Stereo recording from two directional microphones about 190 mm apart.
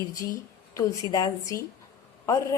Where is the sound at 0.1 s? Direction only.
15° left (ahead or behind).